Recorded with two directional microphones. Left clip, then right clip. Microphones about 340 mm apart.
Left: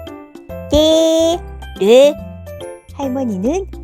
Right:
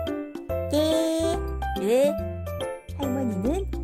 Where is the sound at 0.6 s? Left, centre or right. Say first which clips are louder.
Left 12 dB; centre.